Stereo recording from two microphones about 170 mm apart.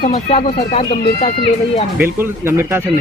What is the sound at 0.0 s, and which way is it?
Speech, 30° left (ahead or behind).